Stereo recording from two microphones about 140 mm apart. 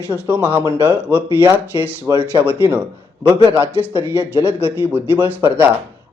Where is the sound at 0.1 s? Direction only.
15° right (ahead or behind).